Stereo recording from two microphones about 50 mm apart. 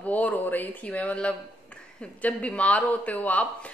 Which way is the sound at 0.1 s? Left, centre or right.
Left.